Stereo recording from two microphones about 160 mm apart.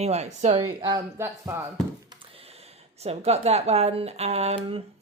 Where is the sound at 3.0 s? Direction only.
40° right (ahead or behind).